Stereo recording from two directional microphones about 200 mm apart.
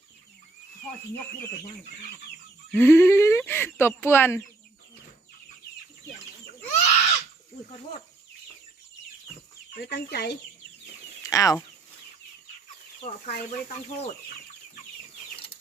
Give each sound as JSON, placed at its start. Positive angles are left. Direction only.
{"t": 2.7, "sound": "speech", "side_deg": 10}
{"t": 6.6, "sound": "a sound", "side_deg": 35}
{"t": 9.9, "sound": "speech", "side_deg": 55}
{"t": 11.3, "sound": "speech", "side_deg": 15}